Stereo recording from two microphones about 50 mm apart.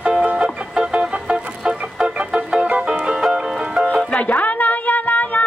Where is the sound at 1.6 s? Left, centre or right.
Right.